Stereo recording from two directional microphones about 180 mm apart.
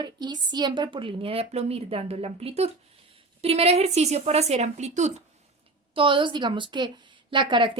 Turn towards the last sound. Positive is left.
turn(degrees=-25)  # may be behind; listen again after turning